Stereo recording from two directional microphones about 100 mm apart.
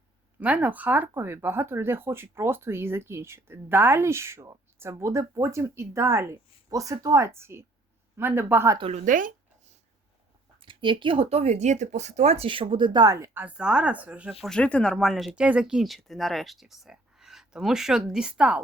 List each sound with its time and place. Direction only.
0.3 s speech: 20° right (ahead or behind)
10.6 s speech: 55° right (ahead or behind)
13.1 s speech: 30° right (ahead or behind)
13.4 s speech: 10° right (ahead or behind)
14.4 s speech: 10° left (ahead or behind); by 18.6 s 10° right (ahead or behind)